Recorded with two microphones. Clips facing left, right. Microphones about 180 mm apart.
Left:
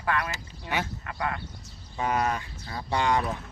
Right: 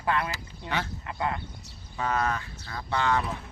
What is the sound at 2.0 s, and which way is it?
Speech, 15° left (ahead or behind).